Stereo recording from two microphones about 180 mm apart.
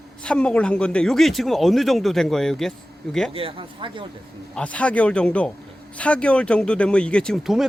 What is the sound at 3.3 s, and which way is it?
Speech, 30° right (ahead or behind).